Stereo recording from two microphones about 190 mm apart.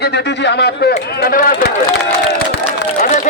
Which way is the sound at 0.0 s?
60° left (ahead or behind).